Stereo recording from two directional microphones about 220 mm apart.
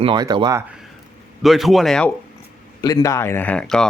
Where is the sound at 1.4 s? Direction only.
Centre (ahead or behind).